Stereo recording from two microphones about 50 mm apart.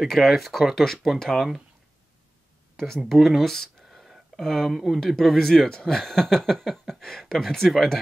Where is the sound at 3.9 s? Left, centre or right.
Centre.